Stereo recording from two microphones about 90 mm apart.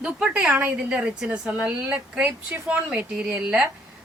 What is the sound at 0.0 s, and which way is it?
Speech, 5° right (ahead or behind).